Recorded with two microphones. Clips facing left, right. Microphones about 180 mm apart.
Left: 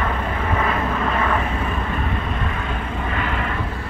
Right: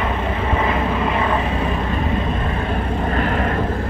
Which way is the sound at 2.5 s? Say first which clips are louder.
Right 5 dB; 35° right (ahead or behind).